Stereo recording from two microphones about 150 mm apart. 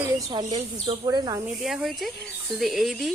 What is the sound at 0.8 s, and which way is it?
Speech, 25° right (ahead or behind).